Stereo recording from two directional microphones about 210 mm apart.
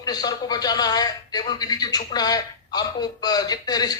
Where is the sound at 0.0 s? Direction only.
20° left (ahead or behind).